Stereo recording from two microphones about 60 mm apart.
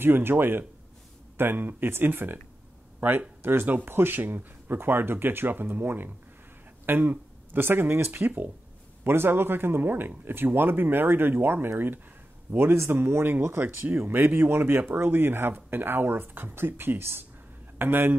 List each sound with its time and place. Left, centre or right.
0.0 s a man's voice: right